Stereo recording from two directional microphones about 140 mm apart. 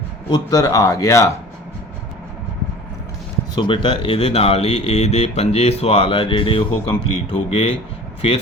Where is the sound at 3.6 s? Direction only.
35° left (ahead or behind).